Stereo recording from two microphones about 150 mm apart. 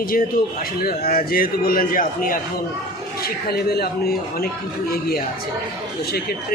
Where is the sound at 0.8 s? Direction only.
85° left; by 2.4 s 65° left (ahead or behind).